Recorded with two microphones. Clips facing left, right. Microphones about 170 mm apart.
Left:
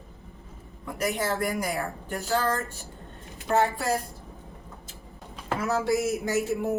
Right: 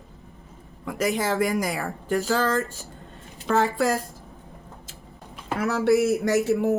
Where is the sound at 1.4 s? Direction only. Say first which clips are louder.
Right 4 dB; 90° right.